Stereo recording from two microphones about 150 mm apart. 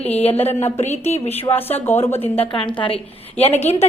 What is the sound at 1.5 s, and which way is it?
Speech, 15° left (ahead or behind).